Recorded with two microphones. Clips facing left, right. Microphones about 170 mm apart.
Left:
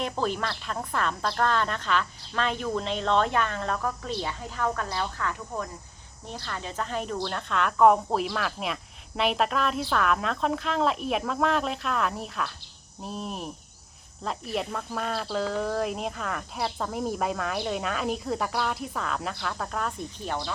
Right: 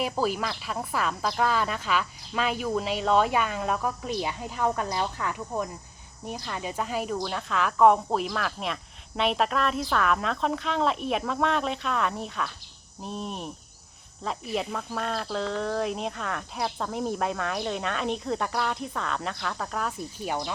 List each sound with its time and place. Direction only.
0.0 s speech: 5° right (ahead or behind)